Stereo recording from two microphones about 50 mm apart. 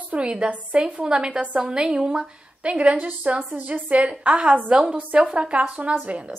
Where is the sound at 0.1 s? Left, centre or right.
Right.